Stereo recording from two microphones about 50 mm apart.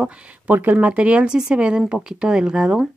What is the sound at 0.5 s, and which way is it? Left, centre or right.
A woman's voice, right.